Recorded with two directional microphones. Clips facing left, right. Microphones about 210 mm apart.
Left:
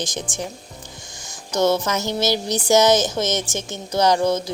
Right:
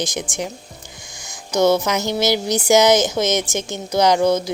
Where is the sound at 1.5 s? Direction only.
10° right (ahead or behind).